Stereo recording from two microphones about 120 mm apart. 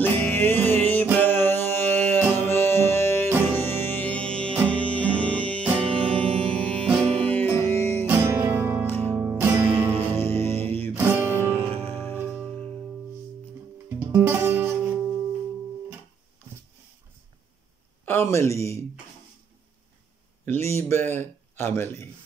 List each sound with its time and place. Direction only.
0.0 s music: 15° left (ahead or behind)
8.1 s music: 20° right (ahead or behind)
8.8 s music: 15° left (ahead or behind)
9.1 s music: 20° right (ahead or behind)
10.1 s music: 20° left (ahead or behind)
10.9 s music: 20° right (ahead or behind)
11.6 s music: 15° left (ahead or behind)
13.8 s music: 20° right (ahead or behind)
18.0 s a sound: 20° left (ahead or behind)
20.4 s a sound: 20° left (ahead or behind)
21.1 s speech: 20° left (ahead or behind)